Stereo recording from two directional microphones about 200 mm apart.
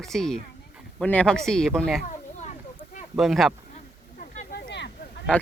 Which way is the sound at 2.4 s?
40° left (ahead or behind).